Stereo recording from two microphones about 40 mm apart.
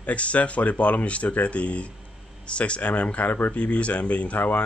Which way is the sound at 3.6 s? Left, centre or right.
Left.